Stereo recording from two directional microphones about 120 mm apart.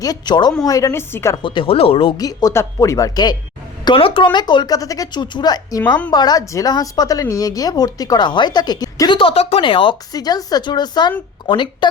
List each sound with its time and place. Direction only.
0.0 s speech: 35° left (ahead or behind)
1.4 s speech: 45° left (ahead or behind)
2.1 s speech: 30° left (ahead or behind)
3.8 s speech: 45° left (ahead or behind)
10.1 s speech: 35° left (ahead or behind)